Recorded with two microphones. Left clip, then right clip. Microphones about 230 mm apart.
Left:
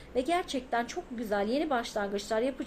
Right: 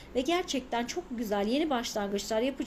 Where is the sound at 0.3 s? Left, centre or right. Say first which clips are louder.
Left 1 dB; right.